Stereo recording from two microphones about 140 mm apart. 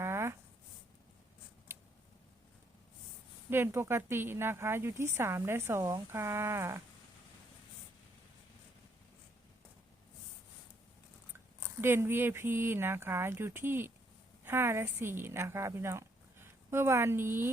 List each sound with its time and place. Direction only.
0.0 s writing: 20° right (ahead or behind)
1.7 s scissors: 15° right (ahead or behind)
3.5 s a woman's voice: 15° right (ahead or behind)
11.6 s a woman's voice: 15° right (ahead or behind)